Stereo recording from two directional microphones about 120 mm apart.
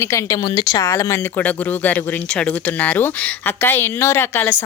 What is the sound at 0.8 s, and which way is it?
Speech, 25° left (ahead or behind).